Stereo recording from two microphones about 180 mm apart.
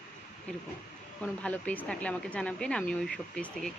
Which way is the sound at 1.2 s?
10° left (ahead or behind).